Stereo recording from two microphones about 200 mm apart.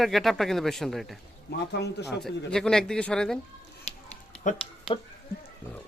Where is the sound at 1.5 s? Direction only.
55° left (ahead or behind).